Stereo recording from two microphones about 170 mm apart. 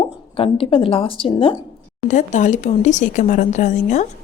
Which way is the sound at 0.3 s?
35° left (ahead or behind).